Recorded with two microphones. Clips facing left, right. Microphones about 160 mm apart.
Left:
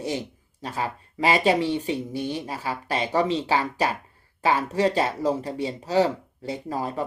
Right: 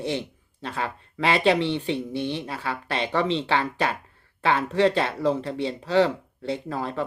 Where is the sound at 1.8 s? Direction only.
40° left (ahead or behind).